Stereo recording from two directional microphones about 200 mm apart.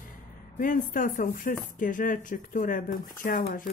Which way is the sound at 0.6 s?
40° left (ahead or behind).